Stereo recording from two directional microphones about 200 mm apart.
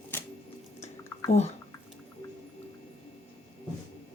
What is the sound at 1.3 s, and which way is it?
Speech, 35° left (ahead or behind).